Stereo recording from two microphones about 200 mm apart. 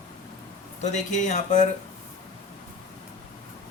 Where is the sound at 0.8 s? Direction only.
35° left (ahead or behind).